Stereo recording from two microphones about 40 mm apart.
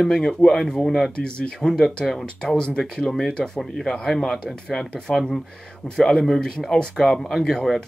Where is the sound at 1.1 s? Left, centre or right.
Left.